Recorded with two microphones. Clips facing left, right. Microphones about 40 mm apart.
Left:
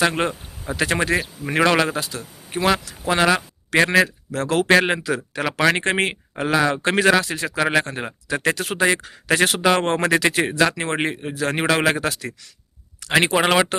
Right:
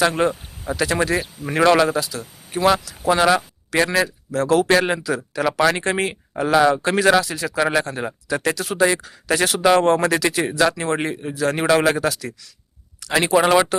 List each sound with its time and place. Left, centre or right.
0.0 s a man's voice: left
3.7 s speech: left
6.3 s a man's voice: left